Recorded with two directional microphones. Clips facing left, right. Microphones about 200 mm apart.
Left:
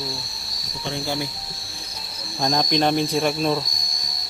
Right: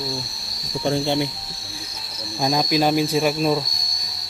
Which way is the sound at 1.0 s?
25° right (ahead or behind).